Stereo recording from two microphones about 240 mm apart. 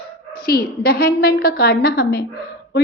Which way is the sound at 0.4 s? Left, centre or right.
Left.